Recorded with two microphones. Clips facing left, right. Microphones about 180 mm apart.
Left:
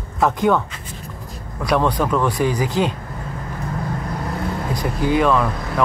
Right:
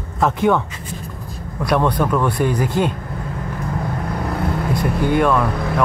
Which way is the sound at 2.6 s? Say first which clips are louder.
Right 1 dB; 55° right (ahead or behind).